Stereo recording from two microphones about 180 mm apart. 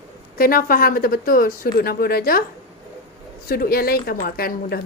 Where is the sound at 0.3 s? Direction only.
55° left (ahead or behind).